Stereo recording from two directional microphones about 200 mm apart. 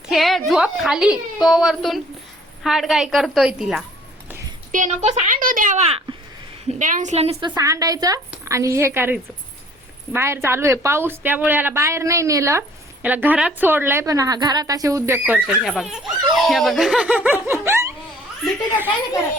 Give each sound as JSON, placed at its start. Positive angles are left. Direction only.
{"t": 0.1, "sound": "a sound", "side_deg": 0}
{"t": 2.6, "sound": "speech", "side_deg": 0}
{"t": 4.7, "sound": "speech", "side_deg": -35}
{"t": 5.4, "sound": "speech", "side_deg": -45}
{"t": 7.3, "sound": "a woman's voice", "side_deg": -20}
{"t": 15.4, "sound": "speech", "side_deg": 0}